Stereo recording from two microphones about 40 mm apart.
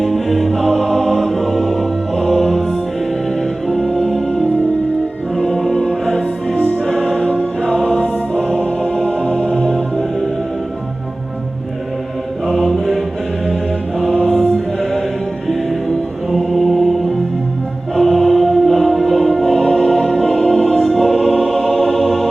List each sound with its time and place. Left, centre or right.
0.0 s music: centre
5.6 s music: centre
6.8 s music: left
9.7 s music: centre
12.5 s music: centre
12.7 s choir: centre
14.3 s mantra: centre
16.3 s choir: centre
17.9 s music: centre